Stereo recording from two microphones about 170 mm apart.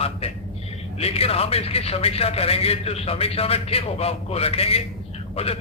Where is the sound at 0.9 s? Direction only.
35° left (ahead or behind).